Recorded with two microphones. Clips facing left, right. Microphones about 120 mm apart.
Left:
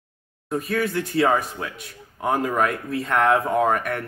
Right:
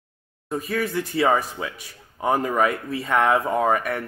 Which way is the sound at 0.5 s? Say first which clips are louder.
Left 2 dB; centre (ahead or behind).